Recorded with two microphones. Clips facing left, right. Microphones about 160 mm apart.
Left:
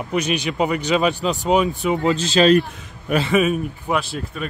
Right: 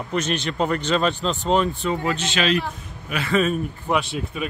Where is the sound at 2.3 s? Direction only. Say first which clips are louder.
Left 9 dB; 40° left (ahead or behind).